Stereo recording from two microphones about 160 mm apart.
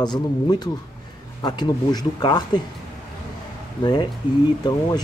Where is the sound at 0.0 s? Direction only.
25° left (ahead or behind).